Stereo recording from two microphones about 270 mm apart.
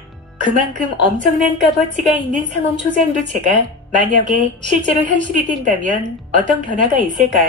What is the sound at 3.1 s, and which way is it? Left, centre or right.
Speech, right.